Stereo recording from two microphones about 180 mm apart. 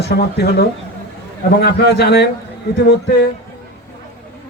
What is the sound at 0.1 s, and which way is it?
A man's voice, 65° left (ahead or behind).